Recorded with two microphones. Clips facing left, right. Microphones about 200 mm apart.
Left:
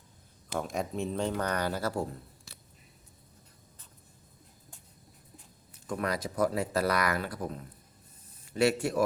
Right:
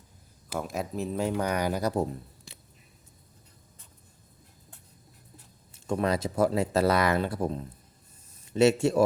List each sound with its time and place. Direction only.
0.5 s speech: 5° right (ahead or behind); by 2.6 s 20° right (ahead or behind)
5.7 s speech: 25° right (ahead or behind)